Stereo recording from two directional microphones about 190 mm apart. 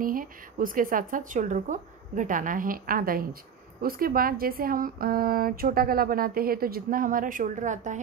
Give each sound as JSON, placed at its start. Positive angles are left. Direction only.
{"t": 0.0, "sound": "speech", "side_deg": -45}